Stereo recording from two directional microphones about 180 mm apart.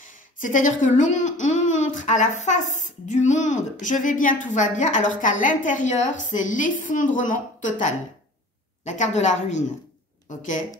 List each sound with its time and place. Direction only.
0.0 s a woman's voice: 45° left (ahead or behind)
8.8 s a woman's voice: 40° left (ahead or behind)